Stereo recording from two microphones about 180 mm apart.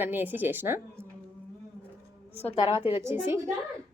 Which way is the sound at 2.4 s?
35° left (ahead or behind).